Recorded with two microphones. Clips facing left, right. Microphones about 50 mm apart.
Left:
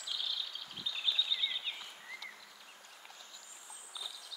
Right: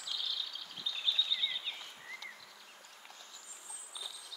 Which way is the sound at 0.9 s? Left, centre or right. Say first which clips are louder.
Even; centre.